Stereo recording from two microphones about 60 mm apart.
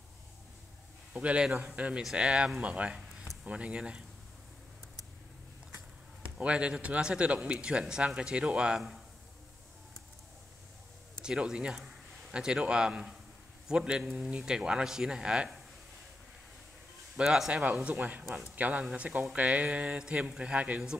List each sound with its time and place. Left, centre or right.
1.1 s speech: right
6.3 s speech: centre
11.2 s speech: centre
17.2 s speech: centre
17.8 s speech: right